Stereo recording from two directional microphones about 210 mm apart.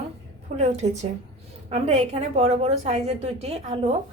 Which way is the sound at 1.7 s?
30° right (ahead or behind).